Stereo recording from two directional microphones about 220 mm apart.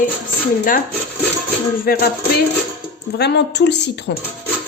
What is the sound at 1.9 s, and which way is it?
Speech, 40° left (ahead or behind).